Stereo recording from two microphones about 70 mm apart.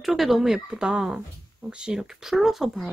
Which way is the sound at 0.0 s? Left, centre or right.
Centre.